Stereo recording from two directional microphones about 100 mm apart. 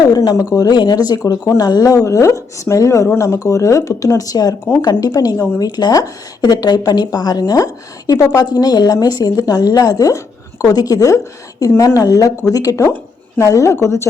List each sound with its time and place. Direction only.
0.0 s a woman's voice: 40° left (ahead or behind)